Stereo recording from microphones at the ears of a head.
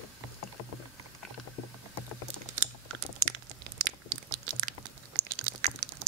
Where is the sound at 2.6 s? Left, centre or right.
Right.